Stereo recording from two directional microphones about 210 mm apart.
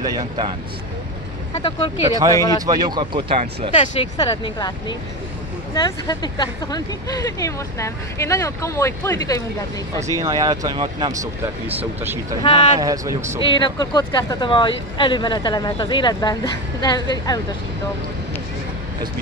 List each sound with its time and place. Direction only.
0.0 s speech: 15° right (ahead or behind)
1.5 s speech: 25° left (ahead or behind)
2.0 s speech: 15° right (ahead or behind)
2.3 s speech: 15° left (ahead or behind)
2.6 s speech: 20° right (ahead or behind)
3.7 s speech: 30° left (ahead or behind); by 9.4 s 15° left (ahead or behind)
9.9 s speech: 15° right (ahead or behind)
13.4 s speech: 25° left (ahead or behind)